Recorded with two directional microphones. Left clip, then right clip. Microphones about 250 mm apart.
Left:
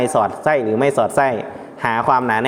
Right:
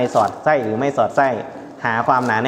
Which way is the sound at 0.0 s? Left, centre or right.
Left.